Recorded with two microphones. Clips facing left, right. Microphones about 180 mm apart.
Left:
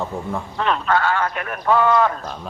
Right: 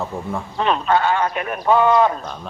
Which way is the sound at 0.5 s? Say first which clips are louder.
Right 2 dB; 20° right (ahead or behind).